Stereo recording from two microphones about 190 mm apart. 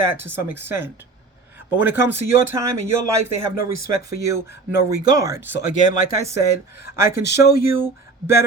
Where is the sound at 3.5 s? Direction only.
50° left (ahead or behind).